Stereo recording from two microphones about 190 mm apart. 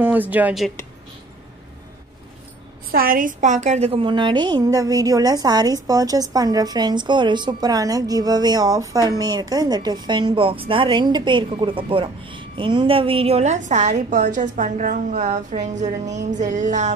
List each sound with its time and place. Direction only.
0.0 s speech: 10° right (ahead or behind)
2.9 s a woman's voice: 50° right (ahead or behind)